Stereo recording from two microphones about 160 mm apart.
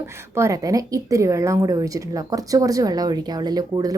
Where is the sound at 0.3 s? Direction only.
20° right (ahead or behind).